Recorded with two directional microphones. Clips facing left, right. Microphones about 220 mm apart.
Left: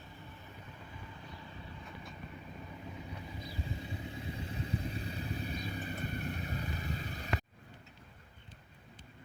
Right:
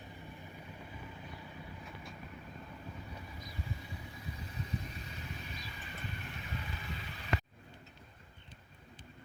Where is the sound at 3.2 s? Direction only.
25° left (ahead or behind); by 7.3 s 40° left (ahead or behind).